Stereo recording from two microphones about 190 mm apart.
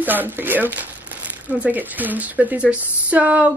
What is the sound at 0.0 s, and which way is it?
Speech, 10° right (ahead or behind).